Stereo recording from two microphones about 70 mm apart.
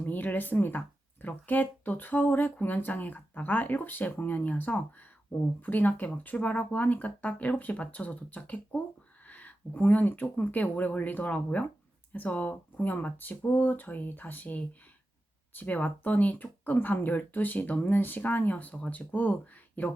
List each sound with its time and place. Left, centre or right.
0.0 s speech: left